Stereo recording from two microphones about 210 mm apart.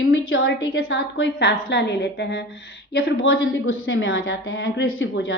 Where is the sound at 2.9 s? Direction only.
70° left (ahead or behind).